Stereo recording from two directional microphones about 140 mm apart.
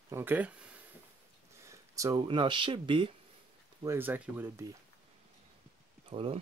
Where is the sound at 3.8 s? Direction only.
15° right (ahead or behind).